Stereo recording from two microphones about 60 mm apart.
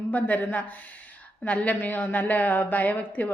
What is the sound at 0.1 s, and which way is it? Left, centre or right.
A woman's voice, left.